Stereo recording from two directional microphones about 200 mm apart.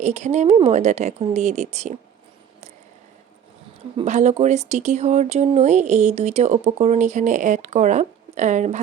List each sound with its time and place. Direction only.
0.0 s speech: 35° right (ahead or behind)
3.9 s speech: 35° right (ahead or behind)